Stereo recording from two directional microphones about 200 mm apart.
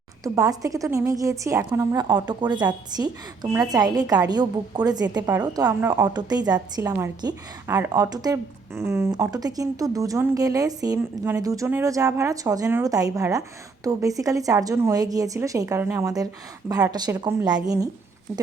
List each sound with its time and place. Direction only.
0.3 s a woman's voice: 15° right (ahead or behind)